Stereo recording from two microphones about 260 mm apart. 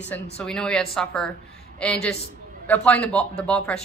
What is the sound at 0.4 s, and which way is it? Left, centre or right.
Speech, centre.